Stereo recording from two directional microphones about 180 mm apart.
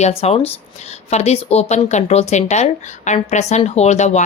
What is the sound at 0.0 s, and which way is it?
Speech, 35° left (ahead or behind).